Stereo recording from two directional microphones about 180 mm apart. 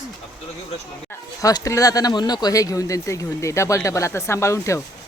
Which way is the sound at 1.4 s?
20° left (ahead or behind).